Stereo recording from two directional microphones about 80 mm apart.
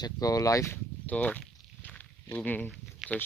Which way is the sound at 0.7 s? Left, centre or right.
Centre.